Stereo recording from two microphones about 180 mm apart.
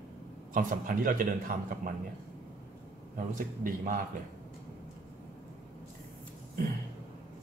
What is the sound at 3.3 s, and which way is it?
Speech, 50° right (ahead or behind).